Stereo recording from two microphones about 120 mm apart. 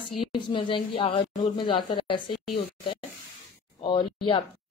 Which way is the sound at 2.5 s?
45° left (ahead or behind).